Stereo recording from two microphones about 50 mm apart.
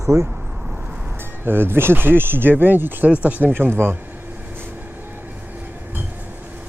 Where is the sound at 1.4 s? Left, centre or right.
Right.